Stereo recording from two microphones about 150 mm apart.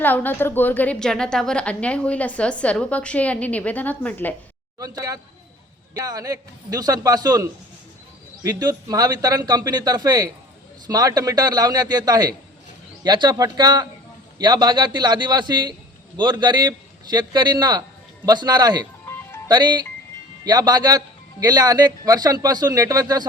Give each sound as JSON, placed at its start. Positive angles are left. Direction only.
{"t": 0.0, "sound": "a woman's voice", "side_deg": 10}
{"t": 4.8, "sound": "speech", "side_deg": -20}